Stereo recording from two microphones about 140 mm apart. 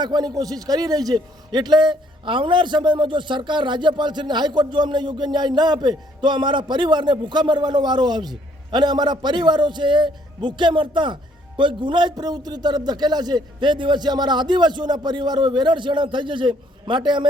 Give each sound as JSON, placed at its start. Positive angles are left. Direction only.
{"t": 0.0, "sound": "a man's voice", "side_deg": -30}